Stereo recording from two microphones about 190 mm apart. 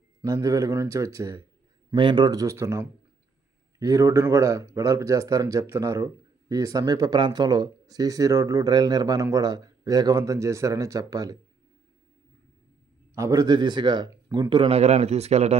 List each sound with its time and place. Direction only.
0.2 s speech: 15° right (ahead or behind)
13.1 s speech: 15° right (ahead or behind); by 15.5 s 35° right (ahead or behind)